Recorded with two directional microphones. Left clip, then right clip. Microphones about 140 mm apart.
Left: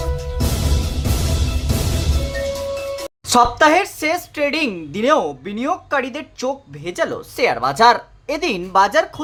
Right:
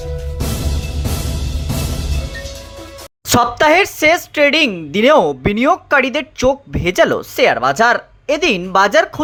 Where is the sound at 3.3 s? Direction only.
30° right (ahead or behind).